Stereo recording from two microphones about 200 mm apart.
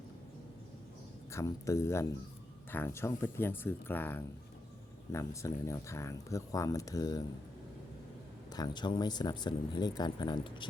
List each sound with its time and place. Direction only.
1.3 s speech: 15° left (ahead or behind)
8.5 s speech: 20° left (ahead or behind)